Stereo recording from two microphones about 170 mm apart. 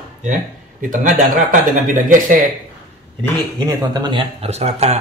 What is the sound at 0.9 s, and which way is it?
Speech, 50° right (ahead or behind).